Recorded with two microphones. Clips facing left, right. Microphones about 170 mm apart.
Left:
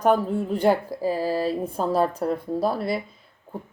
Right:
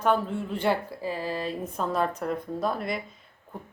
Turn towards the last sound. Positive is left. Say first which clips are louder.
# left 5 dB
turn(degrees=30)  # may be behind; listen again after turning